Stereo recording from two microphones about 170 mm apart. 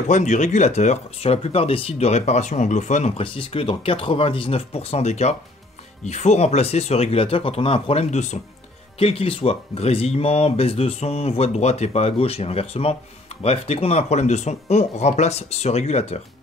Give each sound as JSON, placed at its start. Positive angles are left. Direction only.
{"t": 0.1, "sound": "speech", "side_deg": 45}